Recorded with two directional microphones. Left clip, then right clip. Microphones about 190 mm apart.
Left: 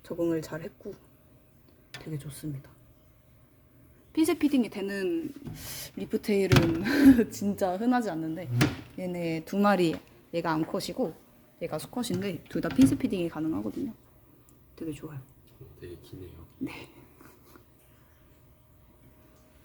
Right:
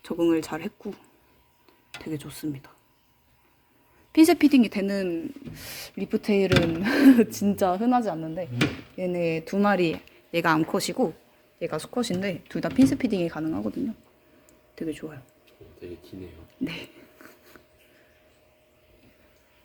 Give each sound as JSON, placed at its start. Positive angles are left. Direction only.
{"t": 0.0, "sound": "speech", "side_deg": -20}
{"t": 2.1, "sound": "speech", "side_deg": -25}
{"t": 4.1, "sound": "speech", "side_deg": -15}
{"t": 5.5, "sound": "speech", "side_deg": -5}
{"t": 7.9, "sound": "speech", "side_deg": 5}
{"t": 9.6, "sound": "speech", "side_deg": 15}
{"t": 10.3, "sound": "speech", "side_deg": -5}
{"t": 14.8, "sound": "speech", "side_deg": -10}
{"t": 16.6, "sound": "speech", "side_deg": -10}